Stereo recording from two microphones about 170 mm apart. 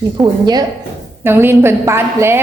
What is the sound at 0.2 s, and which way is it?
A woman's voice, 5° right (ahead or behind).